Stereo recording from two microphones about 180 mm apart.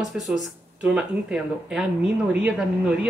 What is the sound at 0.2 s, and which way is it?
Speech, 5° right (ahead or behind).